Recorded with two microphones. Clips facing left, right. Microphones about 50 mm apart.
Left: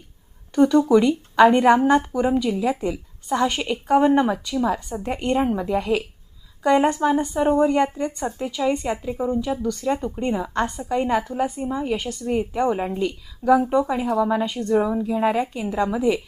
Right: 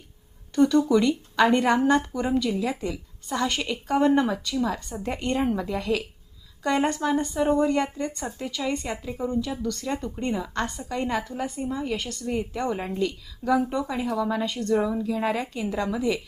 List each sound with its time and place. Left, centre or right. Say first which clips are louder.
0.5 s a woman's voice: left 4 dB; left